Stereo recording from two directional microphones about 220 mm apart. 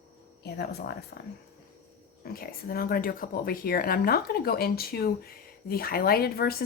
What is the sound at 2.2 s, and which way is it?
Speech, 45° left (ahead or behind).